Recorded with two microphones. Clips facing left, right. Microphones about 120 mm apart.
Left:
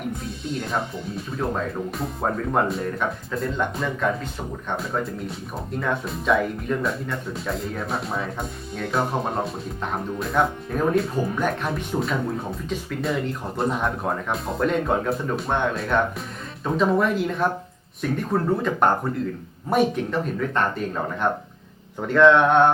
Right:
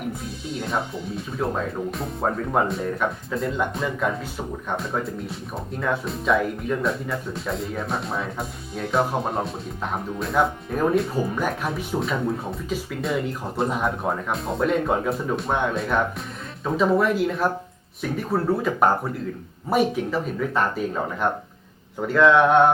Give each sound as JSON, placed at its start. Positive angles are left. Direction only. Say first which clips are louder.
{"t": 0.1, "sound": "speech", "louder": "left 2 dB", "side_deg": 0}